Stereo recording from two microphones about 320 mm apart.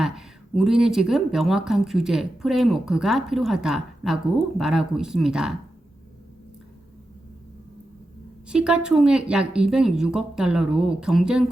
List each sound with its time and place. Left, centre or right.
0.0 s speech: centre
8.4 s speech: centre